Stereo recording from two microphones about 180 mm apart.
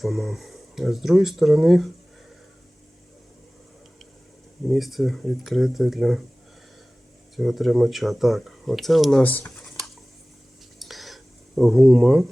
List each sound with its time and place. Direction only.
0.0 s speech: centre (ahead or behind)
4.7 s speech: centre (ahead or behind)
7.3 s speech: centre (ahead or behind)
10.8 s dishes: centre (ahead or behind)